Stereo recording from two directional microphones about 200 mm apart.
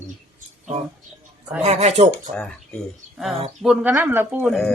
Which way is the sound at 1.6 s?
30° right (ahead or behind).